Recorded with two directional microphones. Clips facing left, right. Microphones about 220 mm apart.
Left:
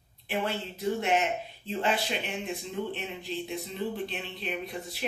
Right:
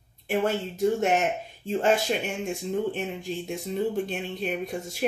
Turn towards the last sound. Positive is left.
turn(degrees=-45)  # may be behind; listen again after turning